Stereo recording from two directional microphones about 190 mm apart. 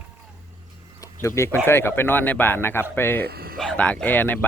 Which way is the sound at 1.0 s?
15° left (ahead or behind).